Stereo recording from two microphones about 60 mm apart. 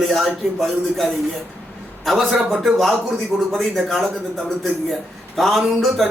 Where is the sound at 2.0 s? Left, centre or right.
Centre.